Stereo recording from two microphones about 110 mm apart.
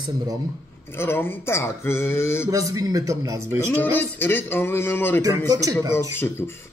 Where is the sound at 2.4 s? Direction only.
30° right (ahead or behind).